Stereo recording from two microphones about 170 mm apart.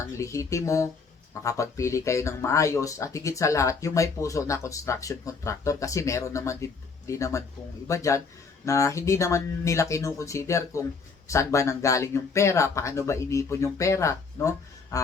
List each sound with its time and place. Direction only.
0.2 s speech: 20° left (ahead or behind)